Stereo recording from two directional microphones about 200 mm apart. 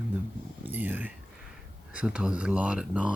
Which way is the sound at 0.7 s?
10° right (ahead or behind).